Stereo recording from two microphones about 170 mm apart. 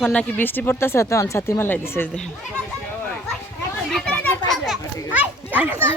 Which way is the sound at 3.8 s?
5° left (ahead or behind).